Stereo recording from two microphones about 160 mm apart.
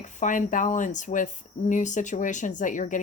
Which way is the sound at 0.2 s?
55° left (ahead or behind).